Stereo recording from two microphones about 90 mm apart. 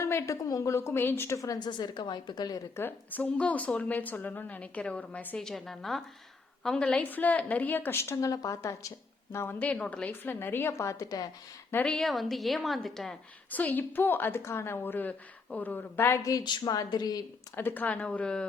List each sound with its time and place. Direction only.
0.0 s a woman's voice: 35° left (ahead or behind)
1.4 s a woman's voice: 45° left (ahead or behind)
2.7 s a woman's voice: 20° left (ahead or behind)
5.4 s a woman's voice: 5° left (ahead or behind); by 9.6 s 30° left (ahead or behind)
9.6 s a woman's voice: 15° left (ahead or behind); by 11.1 s 35° left (ahead or behind)
11.9 s a woman's voice: 5° left (ahead or behind)
13.5 s a woman's voice: 20° left (ahead or behind)
16.4 s a woman's voice: 55° left (ahead or behind)
17.5 s a woman's voice: 25° left (ahead or behind)